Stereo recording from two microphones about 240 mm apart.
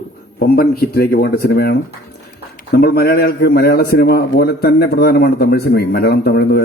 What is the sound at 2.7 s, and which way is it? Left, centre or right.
A man's voice, left.